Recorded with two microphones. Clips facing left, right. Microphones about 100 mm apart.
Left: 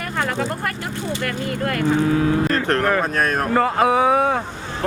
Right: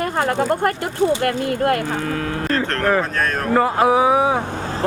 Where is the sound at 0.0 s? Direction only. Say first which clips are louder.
Right 4 dB; 40° right (ahead or behind).